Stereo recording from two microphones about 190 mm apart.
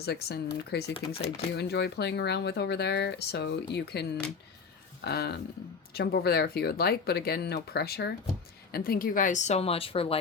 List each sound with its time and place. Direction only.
0.0 s speech: 60° left (ahead or behind)
0.9 s a woman's voice: 30° left (ahead or behind)
1.5 s speech: 60° left (ahead or behind)
5.0 s a woman's voice: 60° left (ahead or behind); by 10.2 s 30° left (ahead or behind)